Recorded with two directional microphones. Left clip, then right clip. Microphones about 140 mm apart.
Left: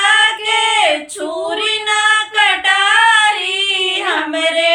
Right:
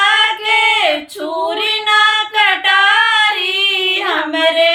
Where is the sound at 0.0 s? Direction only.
20° right (ahead or behind).